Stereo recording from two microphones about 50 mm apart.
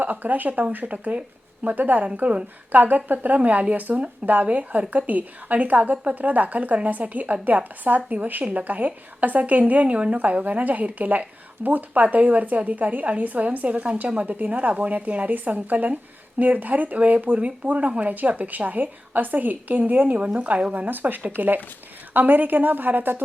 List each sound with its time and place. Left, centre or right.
0.0 s a woman's voice: right
20.7 s a woman's voice: right